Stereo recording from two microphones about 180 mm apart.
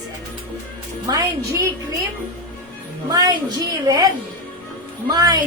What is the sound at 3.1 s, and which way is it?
A woman's voice, 20° right (ahead or behind).